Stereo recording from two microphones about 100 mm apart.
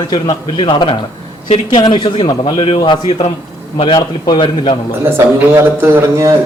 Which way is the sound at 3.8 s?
45° left (ahead or behind).